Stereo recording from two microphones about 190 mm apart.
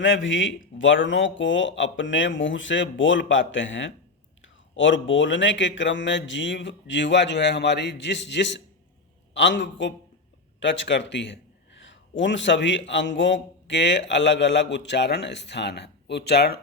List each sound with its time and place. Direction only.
0.0 s a man's voice: 85° left; by 16.6 s 55° left (ahead or behind)